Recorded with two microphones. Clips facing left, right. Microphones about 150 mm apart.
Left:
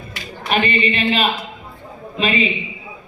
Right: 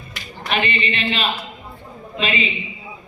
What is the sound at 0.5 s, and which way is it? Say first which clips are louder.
A man's voice: left 4 dB; 40° left (ahead or behind).